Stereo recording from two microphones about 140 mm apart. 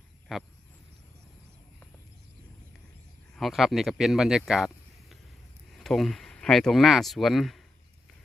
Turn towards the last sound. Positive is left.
turn(degrees=0)  # may be behind; listen again after turning